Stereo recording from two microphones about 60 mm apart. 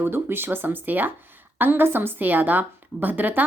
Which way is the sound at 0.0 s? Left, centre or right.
Right.